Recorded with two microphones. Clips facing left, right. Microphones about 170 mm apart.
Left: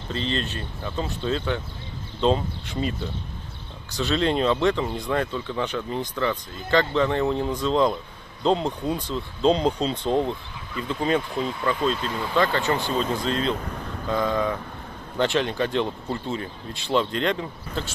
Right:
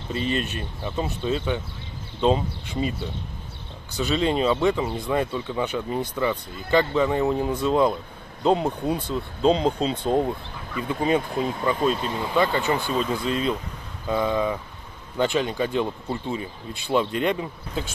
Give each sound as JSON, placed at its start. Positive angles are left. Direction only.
{"t": 0.1, "sound": "speech", "side_deg": -10}
{"t": 4.0, "sound": "speech", "side_deg": -5}
{"t": 13.7, "sound": "vehicle", "side_deg": 60}
{"t": 14.1, "sound": "speech", "side_deg": -10}